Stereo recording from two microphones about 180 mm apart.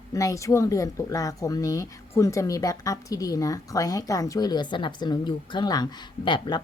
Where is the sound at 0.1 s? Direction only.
20° left (ahead or behind).